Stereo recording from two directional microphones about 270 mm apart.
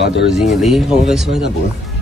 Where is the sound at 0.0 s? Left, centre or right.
Left.